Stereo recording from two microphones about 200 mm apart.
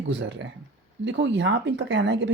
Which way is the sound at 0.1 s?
60° right (ahead or behind).